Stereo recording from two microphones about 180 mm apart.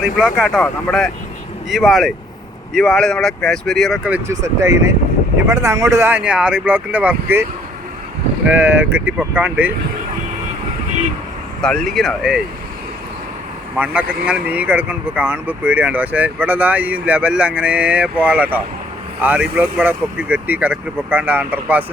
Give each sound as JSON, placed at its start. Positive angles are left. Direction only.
{"t": 0.0, "sound": "speech", "side_deg": -5}
{"t": 4.3, "sound": "speech", "side_deg": -15}
{"t": 8.4, "sound": "speech", "side_deg": -10}
{"t": 11.6, "sound": "speech", "side_deg": 0}
{"t": 13.7, "sound": "speech", "side_deg": -10}